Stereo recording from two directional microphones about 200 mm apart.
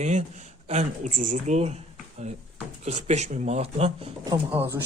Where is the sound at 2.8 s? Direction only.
35° right (ahead or behind).